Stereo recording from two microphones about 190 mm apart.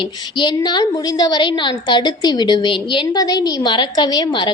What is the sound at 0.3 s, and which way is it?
A woman's voice, 20° left (ahead or behind).